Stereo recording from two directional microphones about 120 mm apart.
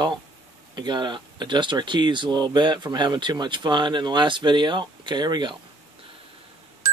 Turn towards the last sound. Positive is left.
turn(degrees=-40)  # may be behind; listen again after turning